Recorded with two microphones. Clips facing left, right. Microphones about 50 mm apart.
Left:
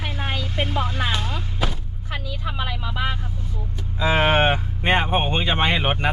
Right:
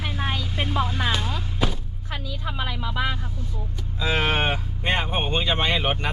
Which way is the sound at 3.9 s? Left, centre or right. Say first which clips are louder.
Left 5 dB; left.